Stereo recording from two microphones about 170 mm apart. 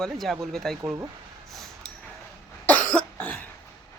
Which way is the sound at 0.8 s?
15° right (ahead or behind).